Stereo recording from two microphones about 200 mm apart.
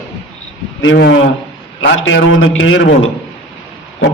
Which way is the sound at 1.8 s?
70° left (ahead or behind).